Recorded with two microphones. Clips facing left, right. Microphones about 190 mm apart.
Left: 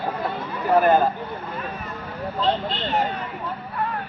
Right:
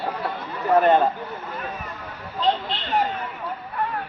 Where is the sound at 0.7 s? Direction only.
5° left (ahead or behind).